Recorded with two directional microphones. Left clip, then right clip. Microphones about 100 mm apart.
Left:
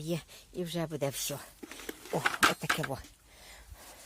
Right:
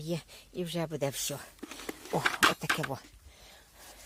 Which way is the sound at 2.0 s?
55° right (ahead or behind).